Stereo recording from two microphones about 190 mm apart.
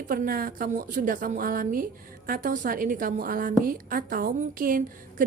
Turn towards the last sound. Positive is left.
turn(degrees=-45)  # may be behind; listen again after turning